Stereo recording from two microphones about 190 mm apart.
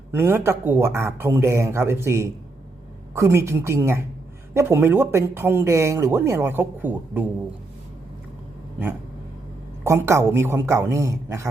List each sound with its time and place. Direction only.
0.1 s speech: 10° right (ahead or behind)
9.8 s speech: 15° right (ahead or behind)